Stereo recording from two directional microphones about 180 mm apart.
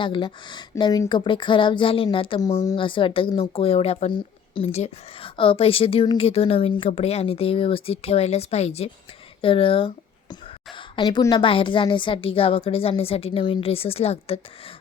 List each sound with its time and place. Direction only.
0.0 s a woman's voice: 25° left (ahead or behind)